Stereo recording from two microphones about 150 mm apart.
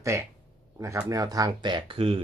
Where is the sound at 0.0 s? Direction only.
20° right (ahead or behind).